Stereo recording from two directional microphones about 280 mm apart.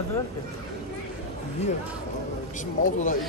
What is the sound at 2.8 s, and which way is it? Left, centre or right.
Speech, left.